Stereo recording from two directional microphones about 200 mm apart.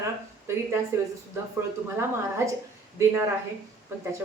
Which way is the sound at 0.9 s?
15° right (ahead or behind).